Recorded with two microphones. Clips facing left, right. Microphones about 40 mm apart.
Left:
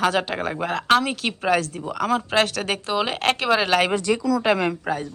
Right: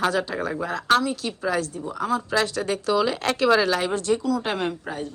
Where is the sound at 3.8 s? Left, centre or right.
Left.